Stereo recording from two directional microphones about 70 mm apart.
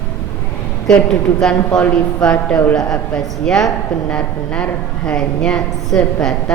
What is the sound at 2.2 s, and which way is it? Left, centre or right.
Speech, left.